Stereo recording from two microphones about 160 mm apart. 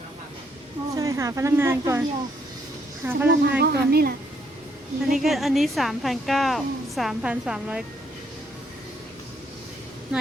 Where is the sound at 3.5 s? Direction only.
85° right.